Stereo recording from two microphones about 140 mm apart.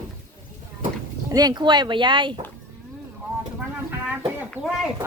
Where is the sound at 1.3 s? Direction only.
30° right (ahead or behind).